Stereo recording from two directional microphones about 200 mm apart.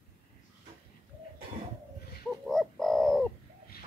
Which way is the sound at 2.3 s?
Centre (ahead or behind).